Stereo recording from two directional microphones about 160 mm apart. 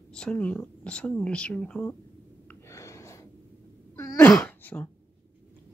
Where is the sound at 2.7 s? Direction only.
20° left (ahead or behind).